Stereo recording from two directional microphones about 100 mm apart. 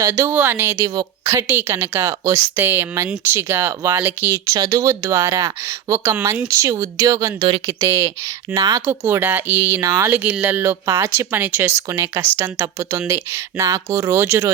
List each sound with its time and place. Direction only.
0.0 s speech: 30° right (ahead or behind)
8.9 s speech: 20° right (ahead or behind)
10.2 s speech: 15° right (ahead or behind)